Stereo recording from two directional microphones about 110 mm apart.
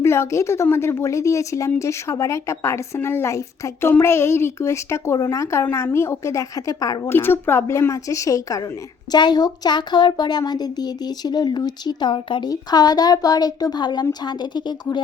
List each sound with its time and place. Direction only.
0.0 s a woman's voice: 25° left (ahead or behind)
7.1 s a woman's voice: 20° left (ahead or behind); by 15.0 s 40° left (ahead or behind)